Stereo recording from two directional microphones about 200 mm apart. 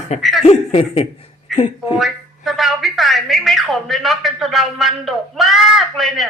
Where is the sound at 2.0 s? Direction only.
Centre (ahead or behind).